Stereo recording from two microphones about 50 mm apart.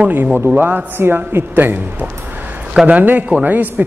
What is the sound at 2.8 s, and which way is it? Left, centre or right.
Speech, right.